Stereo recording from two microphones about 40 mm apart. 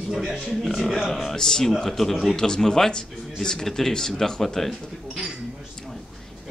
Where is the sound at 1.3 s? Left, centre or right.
Centre.